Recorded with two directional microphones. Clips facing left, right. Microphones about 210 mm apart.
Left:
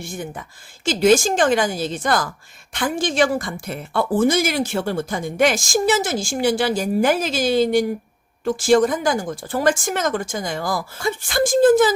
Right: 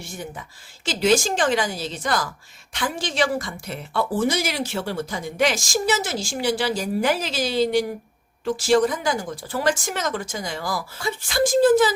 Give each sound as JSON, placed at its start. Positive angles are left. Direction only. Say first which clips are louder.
{"t": 0.0, "sound": "speech", "louder": "left 4 dB", "side_deg": 50}